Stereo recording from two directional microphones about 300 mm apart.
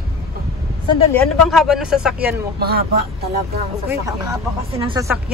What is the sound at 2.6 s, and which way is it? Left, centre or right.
Speech, right.